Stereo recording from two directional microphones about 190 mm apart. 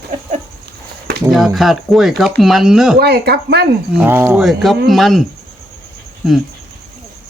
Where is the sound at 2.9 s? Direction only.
55° right (ahead or behind).